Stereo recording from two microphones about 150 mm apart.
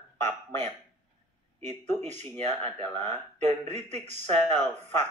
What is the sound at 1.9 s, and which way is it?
Speech, 15° left (ahead or behind).